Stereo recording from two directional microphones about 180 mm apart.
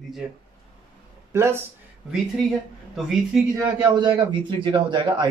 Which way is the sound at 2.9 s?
Centre (ahead or behind).